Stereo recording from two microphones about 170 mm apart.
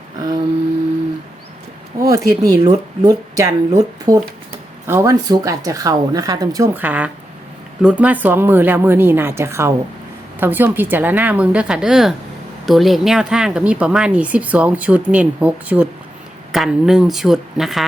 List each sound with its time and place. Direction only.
2.0 s speech: 20° right (ahead or behind)
6.7 s speech: 10° right (ahead or behind)